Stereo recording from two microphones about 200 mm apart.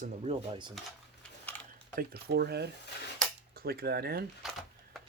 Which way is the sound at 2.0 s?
50° right (ahead or behind).